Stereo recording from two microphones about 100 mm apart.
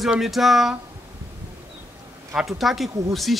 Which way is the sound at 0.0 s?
Centre (ahead or behind).